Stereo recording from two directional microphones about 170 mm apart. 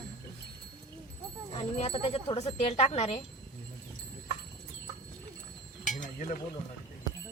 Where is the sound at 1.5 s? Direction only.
35° left (ahead or behind).